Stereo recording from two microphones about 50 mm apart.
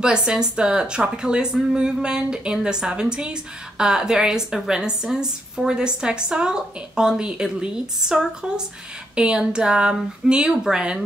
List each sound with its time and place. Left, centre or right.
0.0 s speech: centre